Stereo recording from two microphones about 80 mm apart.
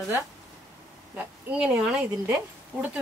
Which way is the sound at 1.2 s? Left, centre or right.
Centre.